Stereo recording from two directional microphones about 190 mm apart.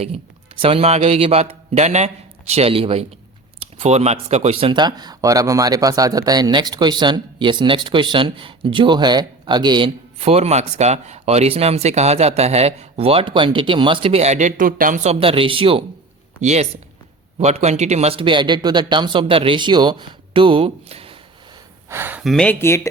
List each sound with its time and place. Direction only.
0.6 s speech: 30° right (ahead or behind)
21.8 s speech: 10° right (ahead or behind); by 22.9 s 15° left (ahead or behind)